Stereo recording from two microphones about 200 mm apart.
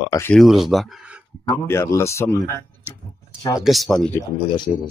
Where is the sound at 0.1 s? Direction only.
10° left (ahead or behind).